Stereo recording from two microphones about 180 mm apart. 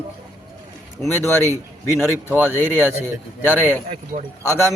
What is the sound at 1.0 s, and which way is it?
A man's voice, 10° left (ahead or behind).